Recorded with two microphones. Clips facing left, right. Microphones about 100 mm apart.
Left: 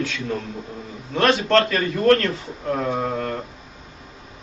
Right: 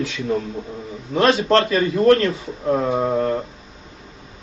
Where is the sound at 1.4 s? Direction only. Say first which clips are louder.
Right 2 dB; 25° right (ahead or behind).